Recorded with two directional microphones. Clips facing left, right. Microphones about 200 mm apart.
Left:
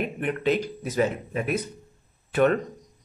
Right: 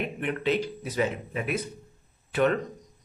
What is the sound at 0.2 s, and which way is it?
Speech, 45° left (ahead or behind).